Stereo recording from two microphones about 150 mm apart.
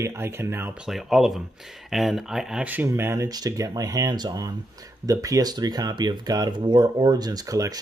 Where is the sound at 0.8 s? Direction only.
Centre (ahead or behind).